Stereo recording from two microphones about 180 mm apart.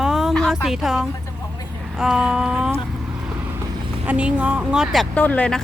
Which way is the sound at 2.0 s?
5° right (ahead or behind).